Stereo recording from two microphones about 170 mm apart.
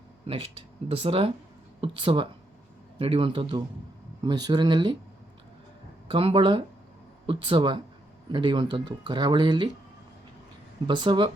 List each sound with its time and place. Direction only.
0.9 s speech: 35° right (ahead or behind)
6.1 s speech: 30° right (ahead or behind)
10.8 s speech: 25° right (ahead or behind)